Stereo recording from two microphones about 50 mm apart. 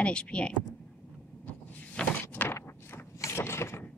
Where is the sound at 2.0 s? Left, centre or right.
Centre.